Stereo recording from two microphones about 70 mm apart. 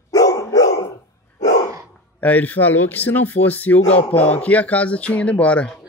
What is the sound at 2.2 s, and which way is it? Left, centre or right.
Speech, left.